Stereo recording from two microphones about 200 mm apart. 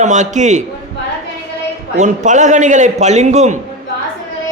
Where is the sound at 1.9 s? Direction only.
35° right (ahead or behind).